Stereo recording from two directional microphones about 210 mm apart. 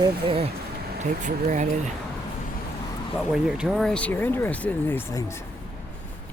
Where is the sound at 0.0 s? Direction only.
25° right (ahead or behind).